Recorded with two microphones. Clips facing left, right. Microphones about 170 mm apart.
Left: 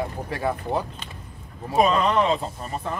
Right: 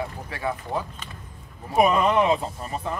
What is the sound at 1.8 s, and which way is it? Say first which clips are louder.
Speech: right 1 dB; 15° right (ahead or behind).